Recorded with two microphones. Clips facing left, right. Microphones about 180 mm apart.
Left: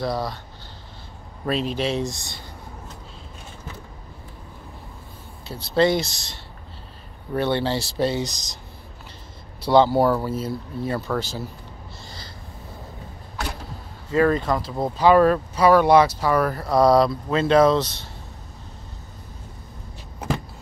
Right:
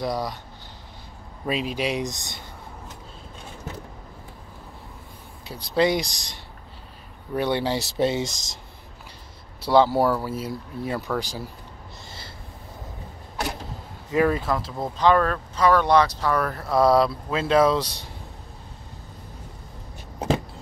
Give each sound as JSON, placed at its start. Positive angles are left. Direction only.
{"t": 0.0, "sound": "speech", "side_deg": -15}
{"t": 1.4, "sound": "speech", "side_deg": -10}
{"t": 5.5, "sound": "speech", "side_deg": -15}
{"t": 9.7, "sound": "speech", "side_deg": -5}
{"t": 14.1, "sound": "speech", "side_deg": -10}
{"t": 15.0, "sound": "speech", "side_deg": 10}